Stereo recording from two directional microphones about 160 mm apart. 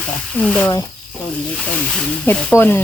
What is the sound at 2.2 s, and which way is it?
Speech, 10° left (ahead or behind).